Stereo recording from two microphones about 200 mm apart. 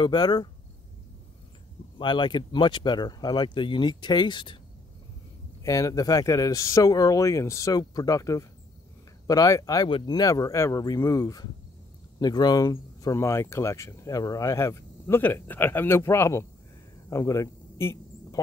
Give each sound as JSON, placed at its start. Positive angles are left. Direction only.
{"t": 0.0, "sound": "speech", "side_deg": 20}
{"t": 2.0, "sound": "speech", "side_deg": 25}
{"t": 5.6, "sound": "speech", "side_deg": 15}
{"t": 17.1, "sound": "a sound", "side_deg": 15}